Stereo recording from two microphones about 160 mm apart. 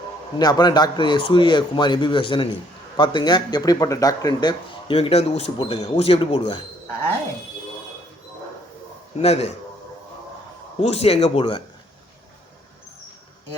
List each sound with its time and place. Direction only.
0.3 s speech: 25° left (ahead or behind)
4.9 s speech: 40° left (ahead or behind)
9.1 s speech: 40° left (ahead or behind)
10.8 s speech: 40° left (ahead or behind)